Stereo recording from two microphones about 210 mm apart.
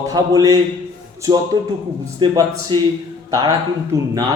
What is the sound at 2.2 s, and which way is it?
Speech, 20° right (ahead or behind).